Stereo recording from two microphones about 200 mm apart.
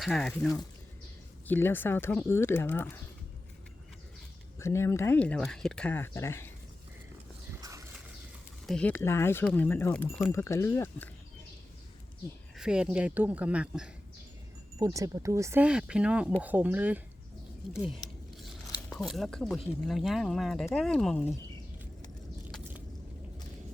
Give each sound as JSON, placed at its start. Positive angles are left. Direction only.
{"t": 0.0, "sound": "speech", "side_deg": 0}
{"t": 4.6, "sound": "speech", "side_deg": 15}
{"t": 7.6, "sound": "a sound", "side_deg": -15}
{"t": 8.6, "sound": "speech", "side_deg": 5}
{"t": 10.3, "sound": "speech", "side_deg": 15}
{"t": 12.5, "sound": "speech", "side_deg": -5}
{"t": 14.8, "sound": "speech", "side_deg": -15}
{"t": 18.9, "sound": "speech", "side_deg": 0}